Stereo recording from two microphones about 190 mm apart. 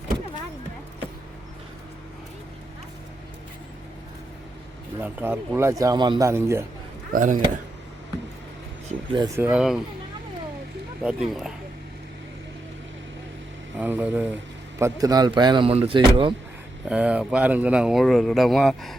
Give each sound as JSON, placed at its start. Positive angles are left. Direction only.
{"t": 4.9, "sound": "a man's voice", "side_deg": -10}
{"t": 7.1, "sound": "speech", "side_deg": -45}
{"t": 9.1, "sound": "a man's voice", "side_deg": -15}
{"t": 11.0, "sound": "speech", "side_deg": -5}
{"t": 13.7, "sound": "a man's voice", "side_deg": -10}
{"t": 16.9, "sound": "speech", "side_deg": -5}